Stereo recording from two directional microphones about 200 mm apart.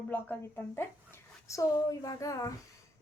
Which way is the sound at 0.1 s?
10° left (ahead or behind).